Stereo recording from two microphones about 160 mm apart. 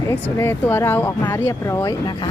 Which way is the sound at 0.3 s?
15° left (ahead or behind).